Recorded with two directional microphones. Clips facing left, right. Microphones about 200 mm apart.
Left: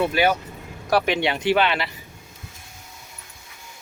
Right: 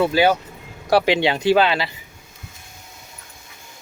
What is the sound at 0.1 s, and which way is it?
Speech, 30° right (ahead or behind).